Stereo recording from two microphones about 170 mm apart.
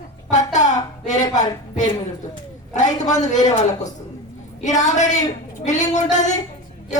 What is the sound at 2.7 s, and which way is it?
Speech, 45° left (ahead or behind).